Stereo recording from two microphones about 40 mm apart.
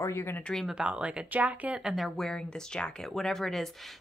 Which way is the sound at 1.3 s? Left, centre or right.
Right.